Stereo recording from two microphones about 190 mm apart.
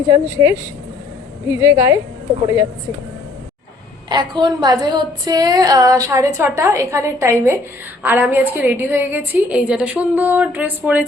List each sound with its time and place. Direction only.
0.3 s a woman's voice: 15° right (ahead or behind)
4.1 s a woman's voice: 25° right (ahead or behind)